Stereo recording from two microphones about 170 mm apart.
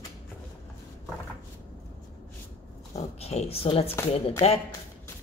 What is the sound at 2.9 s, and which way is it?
Speech, 40° left (ahead or behind).